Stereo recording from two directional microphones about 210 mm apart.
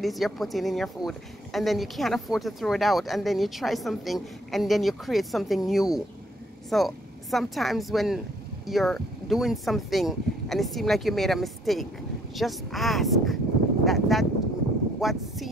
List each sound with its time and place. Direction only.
0.0 s speech: centre (ahead or behind)